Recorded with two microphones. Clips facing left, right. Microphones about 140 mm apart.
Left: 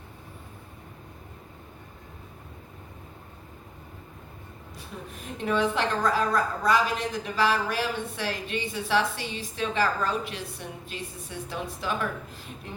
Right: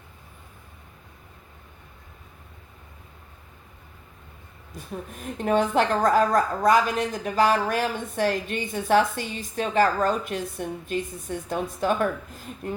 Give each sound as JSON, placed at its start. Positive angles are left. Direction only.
{"t": 5.1, "sound": "a woman's voice", "side_deg": -45}